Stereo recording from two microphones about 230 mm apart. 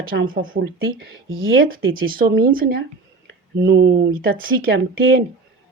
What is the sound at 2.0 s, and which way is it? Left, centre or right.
Speech, right.